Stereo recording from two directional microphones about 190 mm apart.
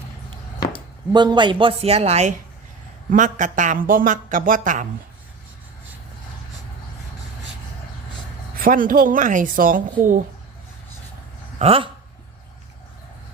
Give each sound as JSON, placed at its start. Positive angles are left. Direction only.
{"t": 1.1, "sound": "speech", "side_deg": -25}
{"t": 8.5, "sound": "speech", "side_deg": -45}
{"t": 11.6, "sound": "speech", "side_deg": -30}